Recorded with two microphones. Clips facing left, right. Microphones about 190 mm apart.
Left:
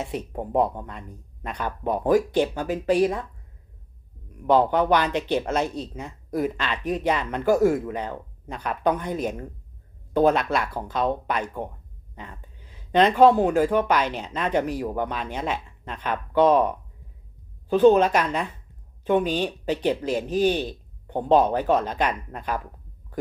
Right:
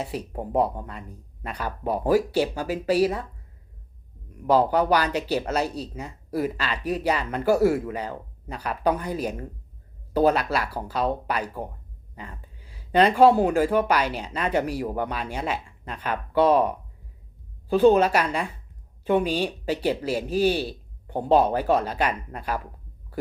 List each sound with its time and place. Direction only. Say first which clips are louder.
0.0 s speech: left 1 dB; 5° right (ahead or behind)
4.8 s speech: left 1 dB; 10° right (ahead or behind)
5.5 s speech: left 1 dB; 35° right (ahead or behind)
5.7 s speech: left 1 dB; 10° right (ahead or behind)